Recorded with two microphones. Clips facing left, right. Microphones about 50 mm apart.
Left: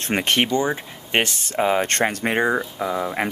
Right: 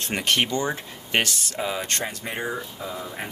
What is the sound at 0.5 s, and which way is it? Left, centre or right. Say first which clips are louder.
Speech: left 4 dB; left.